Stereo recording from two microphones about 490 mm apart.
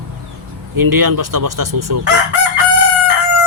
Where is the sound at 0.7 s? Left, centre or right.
Right.